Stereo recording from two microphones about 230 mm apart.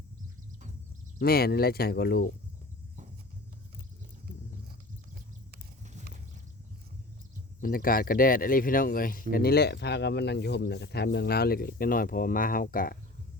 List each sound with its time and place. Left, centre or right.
1.2 s speech: left
7.6 s speech: left